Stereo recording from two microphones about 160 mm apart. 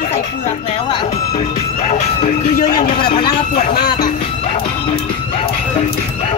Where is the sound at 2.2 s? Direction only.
55° left (ahead or behind).